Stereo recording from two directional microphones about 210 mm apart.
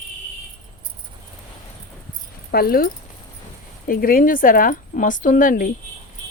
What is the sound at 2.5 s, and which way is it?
Speech, 45° left (ahead or behind).